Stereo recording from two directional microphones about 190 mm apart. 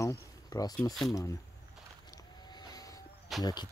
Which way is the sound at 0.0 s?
15° left (ahead or behind).